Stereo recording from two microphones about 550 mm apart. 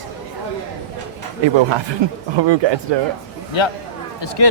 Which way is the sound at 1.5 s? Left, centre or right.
Right.